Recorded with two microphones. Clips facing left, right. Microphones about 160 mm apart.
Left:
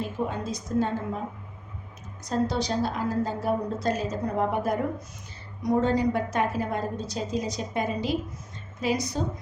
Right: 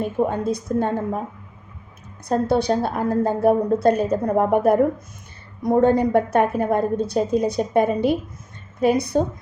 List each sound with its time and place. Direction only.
0.0 s a woman's voice: 55° right (ahead or behind)
2.2 s a woman's voice: 55° right (ahead or behind)